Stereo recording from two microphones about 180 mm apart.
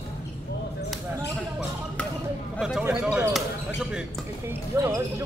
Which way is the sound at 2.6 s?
5° right (ahead or behind).